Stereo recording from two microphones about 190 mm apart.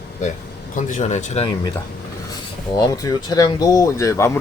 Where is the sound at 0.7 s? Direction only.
40° left (ahead or behind).